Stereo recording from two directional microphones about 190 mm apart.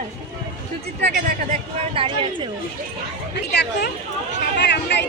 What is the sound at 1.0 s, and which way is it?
Speech, 50° right (ahead or behind).